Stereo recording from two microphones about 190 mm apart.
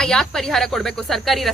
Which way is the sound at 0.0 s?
Centre (ahead or behind).